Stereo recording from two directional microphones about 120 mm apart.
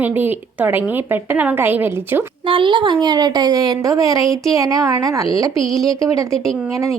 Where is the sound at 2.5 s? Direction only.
45° right (ahead or behind).